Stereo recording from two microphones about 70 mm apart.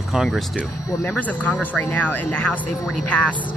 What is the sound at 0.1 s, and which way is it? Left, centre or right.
Speech, centre.